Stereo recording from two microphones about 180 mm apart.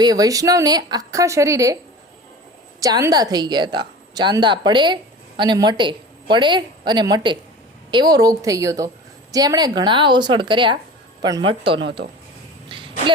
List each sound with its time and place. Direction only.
0.0 s a woman's voice: 20° right (ahead or behind)
2.8 s a woman's voice: 20° right (ahead or behind)
12.6 s a sound: 30° right (ahead or behind)